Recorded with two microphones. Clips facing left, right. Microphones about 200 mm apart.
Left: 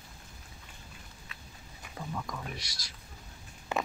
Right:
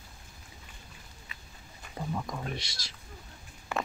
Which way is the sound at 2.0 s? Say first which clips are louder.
Right 3 dB; 25° right (ahead or behind).